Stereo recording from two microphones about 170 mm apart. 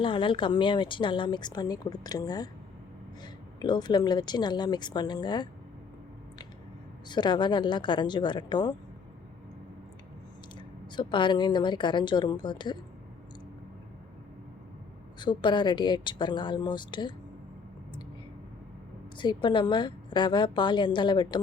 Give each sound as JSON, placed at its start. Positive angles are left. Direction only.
{"t": 0.0, "sound": "speech", "side_deg": 30}
{"t": 3.6, "sound": "speech", "side_deg": 25}
{"t": 7.1, "sound": "speech", "side_deg": 25}
{"t": 10.9, "sound": "speech", "side_deg": 30}
{"t": 15.2, "sound": "speech", "side_deg": 25}
{"t": 19.1, "sound": "speech", "side_deg": 25}